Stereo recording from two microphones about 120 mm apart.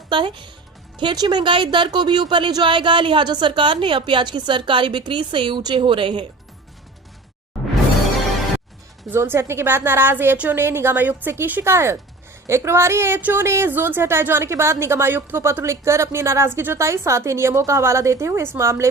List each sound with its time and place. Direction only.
0.1 s a woman's voice: 45° right (ahead or behind)
9.0 s speech: 20° right (ahead or behind)